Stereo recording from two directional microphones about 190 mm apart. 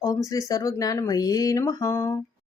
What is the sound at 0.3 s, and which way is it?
Speech, 15° left (ahead or behind).